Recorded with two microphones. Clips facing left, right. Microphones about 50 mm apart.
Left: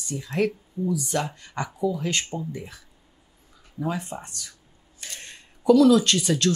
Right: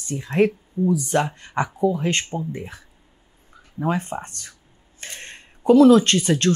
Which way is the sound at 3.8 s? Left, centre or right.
Right.